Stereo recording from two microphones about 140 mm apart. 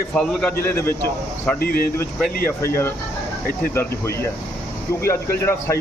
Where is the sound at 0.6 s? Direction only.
20° left (ahead or behind).